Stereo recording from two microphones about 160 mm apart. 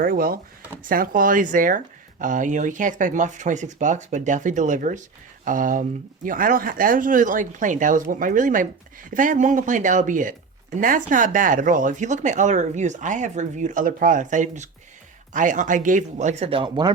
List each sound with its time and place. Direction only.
0.0 s speech: 65° right (ahead or behind); by 16.9 s 30° right (ahead or behind)